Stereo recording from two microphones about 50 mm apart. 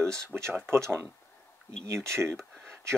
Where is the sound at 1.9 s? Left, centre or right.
Right.